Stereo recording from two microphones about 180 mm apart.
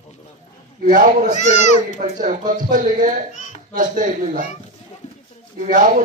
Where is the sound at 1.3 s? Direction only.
40° left (ahead or behind).